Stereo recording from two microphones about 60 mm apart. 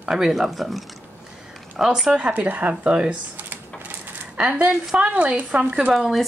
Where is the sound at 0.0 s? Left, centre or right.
Centre.